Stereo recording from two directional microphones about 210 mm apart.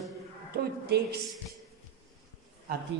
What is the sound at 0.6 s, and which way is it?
Speech, 50° right (ahead or behind).